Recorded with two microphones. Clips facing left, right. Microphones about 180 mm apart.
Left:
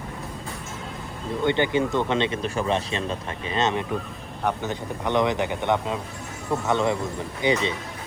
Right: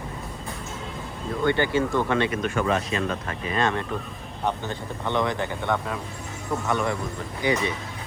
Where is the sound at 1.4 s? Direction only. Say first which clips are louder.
Even; 20° left (ahead or behind).